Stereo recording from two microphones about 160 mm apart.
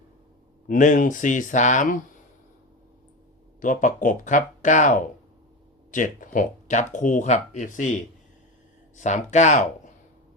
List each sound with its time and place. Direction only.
0.7 s speech: 55° left (ahead or behind)
3.6 s speech: 55° left (ahead or behind)